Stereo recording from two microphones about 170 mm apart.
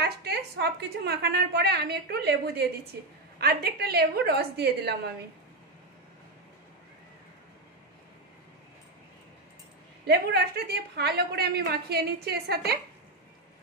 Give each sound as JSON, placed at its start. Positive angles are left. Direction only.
{"t": 0.0, "sound": "a woman's voice", "side_deg": -70}
{"t": 10.0, "sound": "a woman's voice", "side_deg": -70}